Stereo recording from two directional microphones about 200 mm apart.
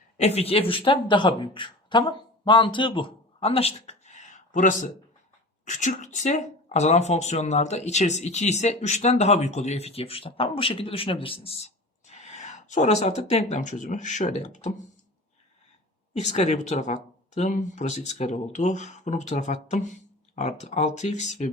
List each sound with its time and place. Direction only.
0.2 s speech: 30° left (ahead or behind)
16.1 s speech: 35° left (ahead or behind)